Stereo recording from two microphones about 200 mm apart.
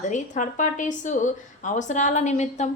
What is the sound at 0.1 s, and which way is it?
A woman's voice, 40° left (ahead or behind).